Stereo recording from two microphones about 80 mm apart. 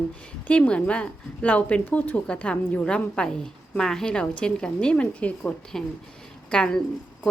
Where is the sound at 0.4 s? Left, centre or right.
Centre.